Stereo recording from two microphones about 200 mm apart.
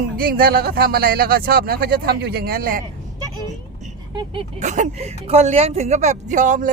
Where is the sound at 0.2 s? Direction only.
45° right (ahead or behind).